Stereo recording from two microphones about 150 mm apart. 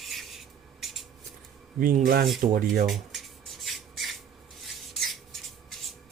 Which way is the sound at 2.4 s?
70° right (ahead or behind).